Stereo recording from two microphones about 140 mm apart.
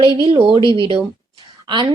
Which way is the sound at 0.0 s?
35° right (ahead or behind).